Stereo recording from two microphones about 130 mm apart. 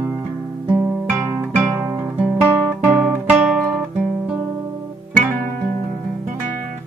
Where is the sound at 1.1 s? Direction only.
25° right (ahead or behind).